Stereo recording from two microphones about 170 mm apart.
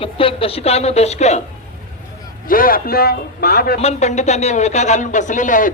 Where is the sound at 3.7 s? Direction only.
40° left (ahead or behind).